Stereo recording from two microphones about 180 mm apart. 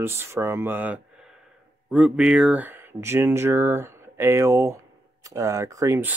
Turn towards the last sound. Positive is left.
turn(degrees=-15)  # may be behind; listen again after turning